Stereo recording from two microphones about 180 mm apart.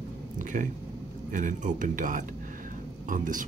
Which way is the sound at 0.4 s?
45° right (ahead or behind).